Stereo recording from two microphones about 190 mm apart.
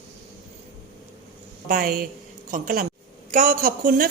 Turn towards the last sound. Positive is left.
turn(degrees=-50)  # may be behind; listen again after turning